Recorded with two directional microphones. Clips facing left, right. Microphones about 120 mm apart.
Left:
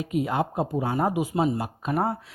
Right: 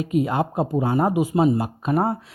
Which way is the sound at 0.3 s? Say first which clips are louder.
Right 3 dB; 40° right (ahead or behind).